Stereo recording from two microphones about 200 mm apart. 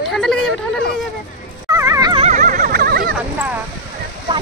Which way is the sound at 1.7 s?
15° right (ahead or behind).